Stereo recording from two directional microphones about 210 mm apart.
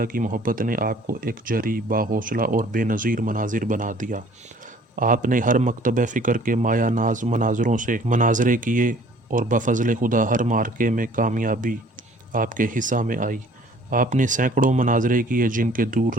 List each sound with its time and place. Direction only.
0.0 s speech: 40° right (ahead or behind)